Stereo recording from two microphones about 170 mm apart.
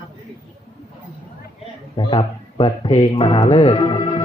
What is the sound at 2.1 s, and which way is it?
Music, 30° left (ahead or behind).